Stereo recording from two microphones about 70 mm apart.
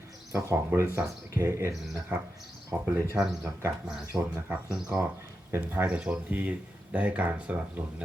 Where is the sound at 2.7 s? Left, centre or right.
Centre.